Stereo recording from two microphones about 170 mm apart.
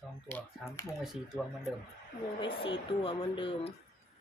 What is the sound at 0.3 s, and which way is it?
Speech, 10° left (ahead or behind).